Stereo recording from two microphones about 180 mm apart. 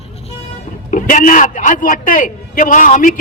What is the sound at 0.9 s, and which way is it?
A man's voice, 45° left (ahead or behind).